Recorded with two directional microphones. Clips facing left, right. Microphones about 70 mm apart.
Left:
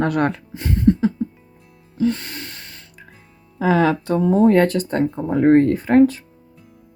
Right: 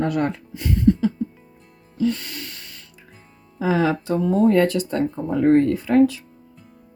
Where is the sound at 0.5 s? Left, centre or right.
Left.